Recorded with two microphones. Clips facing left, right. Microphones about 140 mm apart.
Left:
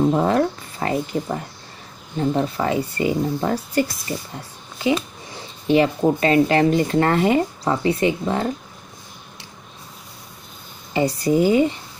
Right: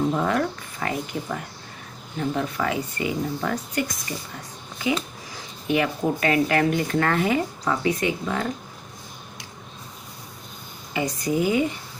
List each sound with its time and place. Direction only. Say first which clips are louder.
0.1 s speech: left 5 dB; 35° left (ahead or behind)
10.9 s speech: left 6 dB; 30° left (ahead or behind)